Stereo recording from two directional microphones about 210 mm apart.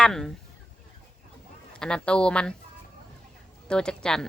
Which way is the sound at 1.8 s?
5° left (ahead or behind).